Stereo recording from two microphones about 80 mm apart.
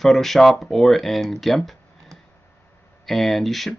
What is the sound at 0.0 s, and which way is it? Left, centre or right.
Speech, centre.